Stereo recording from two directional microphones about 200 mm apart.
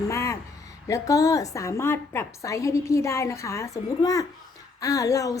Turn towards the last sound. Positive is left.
turn(degrees=15)  # may be behind; listen again after turning